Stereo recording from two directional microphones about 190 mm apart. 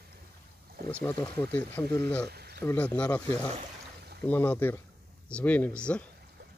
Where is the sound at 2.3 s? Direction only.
55° right (ahead or behind).